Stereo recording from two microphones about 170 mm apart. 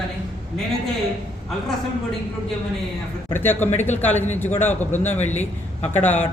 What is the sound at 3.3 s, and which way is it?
A man's voice, 10° left (ahead or behind).